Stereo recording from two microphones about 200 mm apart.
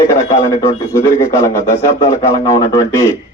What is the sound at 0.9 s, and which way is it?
Speech, 15° left (ahead or behind).